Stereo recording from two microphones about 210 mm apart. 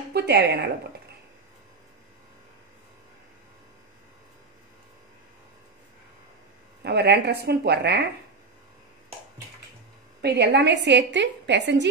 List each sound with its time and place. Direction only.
0.1 s speech: 50° right (ahead or behind)
6.8 s a woman's voice: 50° right (ahead or behind)
10.2 s a woman's voice: 50° right (ahead or behind)